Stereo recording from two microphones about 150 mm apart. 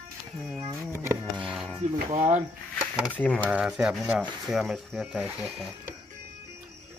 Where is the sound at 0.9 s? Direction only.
15° right (ahead or behind).